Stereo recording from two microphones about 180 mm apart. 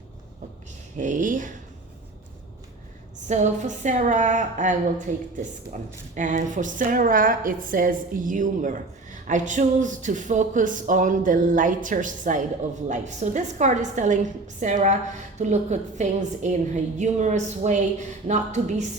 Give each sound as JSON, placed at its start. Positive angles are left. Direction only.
{"t": 0.9, "sound": "speech", "side_deg": -45}
{"t": 3.2, "sound": "a woman's voice", "side_deg": -40}